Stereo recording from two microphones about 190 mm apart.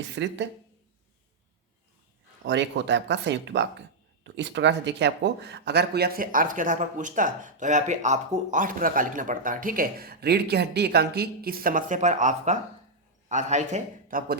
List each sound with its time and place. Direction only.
0.1 s speech: 70° right (ahead or behind)
2.4 s a man's voice: 70° right (ahead or behind); by 14.3 s 45° right (ahead or behind)